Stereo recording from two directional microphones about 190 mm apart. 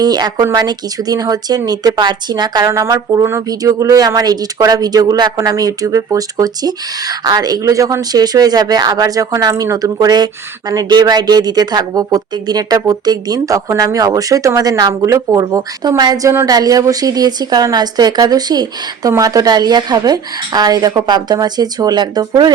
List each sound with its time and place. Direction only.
0.0 s speech: 20° right (ahead or behind)